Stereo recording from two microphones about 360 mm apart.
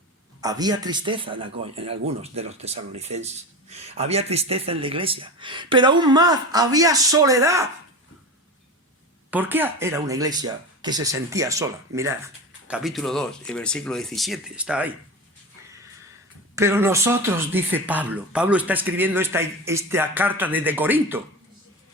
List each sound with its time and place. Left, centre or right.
0.4 s speech: centre
9.3 s speech: centre
16.6 s speech: centre